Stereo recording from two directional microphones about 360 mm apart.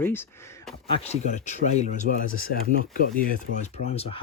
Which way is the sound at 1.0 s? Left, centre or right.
Centre.